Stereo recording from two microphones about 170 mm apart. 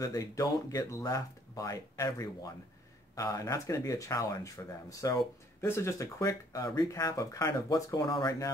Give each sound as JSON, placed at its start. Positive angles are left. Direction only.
{"t": 0.0, "sound": "speech", "side_deg": 20}